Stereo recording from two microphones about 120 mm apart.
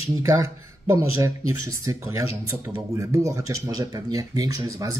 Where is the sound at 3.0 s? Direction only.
25° right (ahead or behind).